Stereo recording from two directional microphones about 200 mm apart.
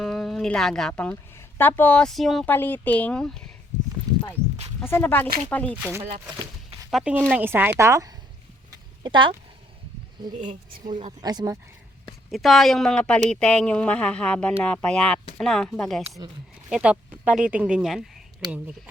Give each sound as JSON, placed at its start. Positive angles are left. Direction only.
{"t": 0.0, "sound": "speech", "side_deg": 0}
{"t": 4.8, "sound": "speech", "side_deg": 10}
{"t": 5.7, "sound": "speech", "side_deg": -5}
{"t": 8.7, "sound": "a sound", "side_deg": -25}
{"t": 10.3, "sound": "a woman's voice", "side_deg": -40}
{"t": 11.2, "sound": "speech", "side_deg": -20}
{"t": 12.3, "sound": "speech", "side_deg": 0}